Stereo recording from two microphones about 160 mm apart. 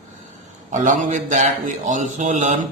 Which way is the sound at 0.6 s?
50° right (ahead or behind).